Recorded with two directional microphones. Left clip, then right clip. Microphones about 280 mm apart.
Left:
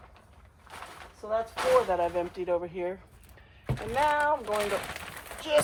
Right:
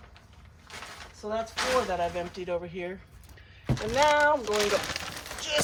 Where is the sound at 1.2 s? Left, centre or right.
Left.